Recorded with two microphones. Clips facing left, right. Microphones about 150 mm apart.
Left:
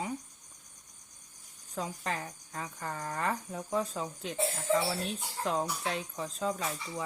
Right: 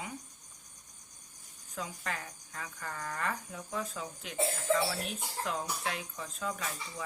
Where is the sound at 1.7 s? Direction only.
30° left (ahead or behind).